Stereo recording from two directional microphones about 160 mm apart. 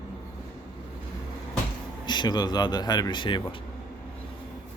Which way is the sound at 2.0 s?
30° left (ahead or behind).